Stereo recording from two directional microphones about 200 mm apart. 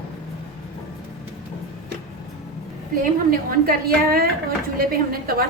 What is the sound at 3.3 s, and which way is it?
A woman's voice, 50° right (ahead or behind).